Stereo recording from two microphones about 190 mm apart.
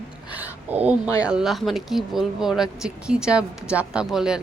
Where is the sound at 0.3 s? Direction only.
10° right (ahead or behind).